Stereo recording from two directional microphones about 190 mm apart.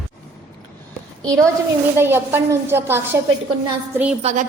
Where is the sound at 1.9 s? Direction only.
10° right (ahead or behind).